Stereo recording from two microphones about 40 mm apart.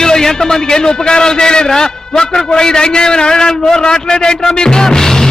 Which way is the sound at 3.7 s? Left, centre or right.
Centre.